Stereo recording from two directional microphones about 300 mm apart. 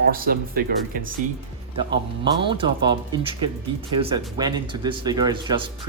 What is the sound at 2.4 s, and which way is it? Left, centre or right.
Speech, centre.